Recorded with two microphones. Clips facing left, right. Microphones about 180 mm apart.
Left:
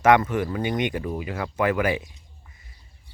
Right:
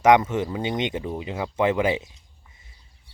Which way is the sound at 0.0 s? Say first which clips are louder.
Right 1 dB; 20° right (ahead or behind).